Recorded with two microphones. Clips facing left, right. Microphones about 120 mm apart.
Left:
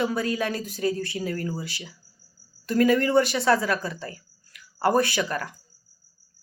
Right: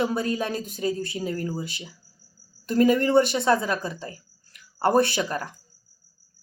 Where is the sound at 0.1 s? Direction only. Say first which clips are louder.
Even; 25° right (ahead or behind).